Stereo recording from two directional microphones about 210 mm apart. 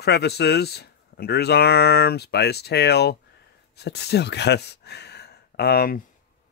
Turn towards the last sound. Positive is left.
turn(degrees=45)  # may be behind; listen again after turning